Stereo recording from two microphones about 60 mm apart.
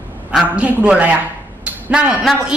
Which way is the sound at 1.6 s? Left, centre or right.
Centre.